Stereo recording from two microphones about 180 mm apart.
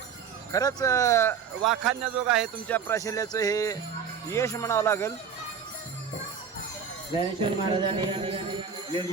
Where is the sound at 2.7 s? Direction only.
15° left (ahead or behind).